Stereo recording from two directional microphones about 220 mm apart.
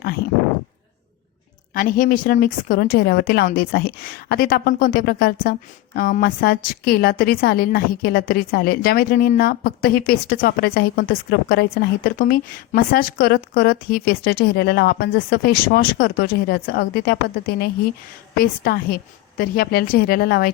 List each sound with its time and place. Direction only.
1.7 s a woman's voice: 40° left (ahead or behind)